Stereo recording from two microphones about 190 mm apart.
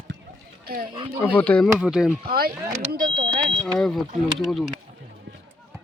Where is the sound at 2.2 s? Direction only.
50° right (ahead or behind).